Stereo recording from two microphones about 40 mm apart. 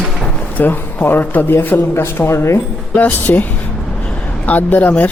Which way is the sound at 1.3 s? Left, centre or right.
Left.